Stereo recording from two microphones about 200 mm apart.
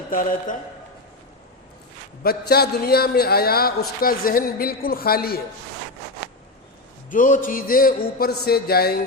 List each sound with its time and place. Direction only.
0.1 s a man's voice: 45° left (ahead or behind)
2.2 s a man's voice: 50° left (ahead or behind)
7.1 s a man's voice: 40° left (ahead or behind)